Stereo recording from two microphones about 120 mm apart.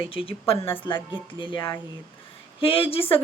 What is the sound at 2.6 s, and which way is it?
Speech, 50° left (ahead or behind).